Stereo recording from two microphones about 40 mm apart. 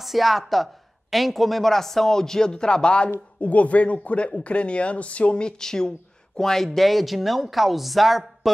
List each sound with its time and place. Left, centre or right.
0.0 s speech: centre; by 3.1 s left
3.3 s speech: left
5.6 s speech: centre